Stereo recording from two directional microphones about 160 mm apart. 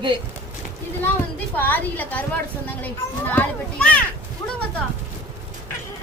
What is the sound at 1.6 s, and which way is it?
Speech, 10° left (ahead or behind).